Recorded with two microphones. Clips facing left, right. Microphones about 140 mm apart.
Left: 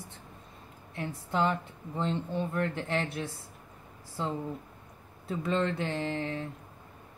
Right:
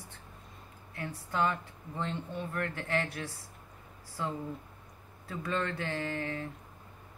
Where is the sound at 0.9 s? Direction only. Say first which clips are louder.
Left 4 dB; 25° left (ahead or behind).